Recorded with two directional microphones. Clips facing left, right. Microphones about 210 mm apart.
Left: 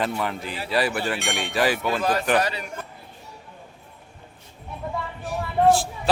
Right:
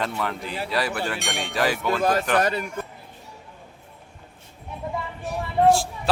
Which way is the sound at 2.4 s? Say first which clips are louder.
Right 4 dB; 50° right (ahead or behind).